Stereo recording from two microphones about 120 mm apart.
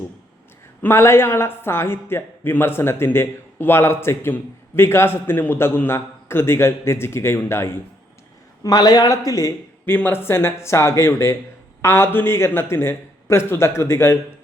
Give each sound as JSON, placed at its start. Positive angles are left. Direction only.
{"t": 0.8, "sound": "a man's voice", "side_deg": 20}
{"t": 8.6, "sound": "a man's voice", "side_deg": 35}